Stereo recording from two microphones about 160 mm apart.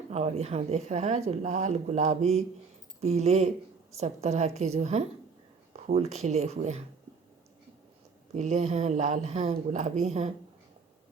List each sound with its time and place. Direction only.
0.1 s speech: 45° right (ahead or behind)
8.3 s speech: 45° right (ahead or behind)